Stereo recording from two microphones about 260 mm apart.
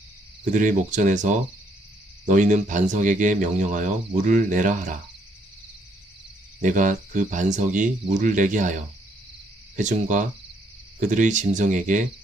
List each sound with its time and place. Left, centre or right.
0.5 s speech: right
6.6 s speech: right
9.7 s speech: right